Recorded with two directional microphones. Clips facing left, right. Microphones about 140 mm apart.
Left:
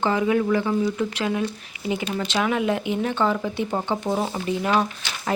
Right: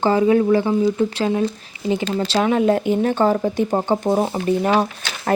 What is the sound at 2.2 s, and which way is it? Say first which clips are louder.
Speech: right 6 dB; 35° right (ahead or behind).